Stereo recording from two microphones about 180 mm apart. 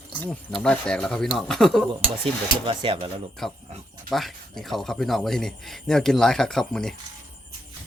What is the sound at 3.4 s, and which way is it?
Speech, centre (ahead or behind).